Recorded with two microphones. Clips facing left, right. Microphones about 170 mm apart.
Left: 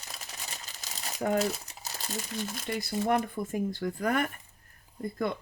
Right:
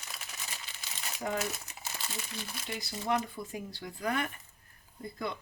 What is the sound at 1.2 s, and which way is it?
Speech, 35° left (ahead or behind).